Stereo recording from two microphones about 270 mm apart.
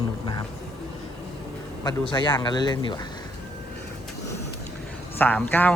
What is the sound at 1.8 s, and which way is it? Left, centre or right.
Speech, centre.